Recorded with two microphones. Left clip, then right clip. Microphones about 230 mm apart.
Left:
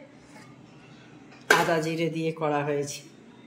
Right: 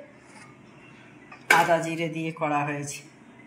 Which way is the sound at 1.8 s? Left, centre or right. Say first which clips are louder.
Left 1 dB; left.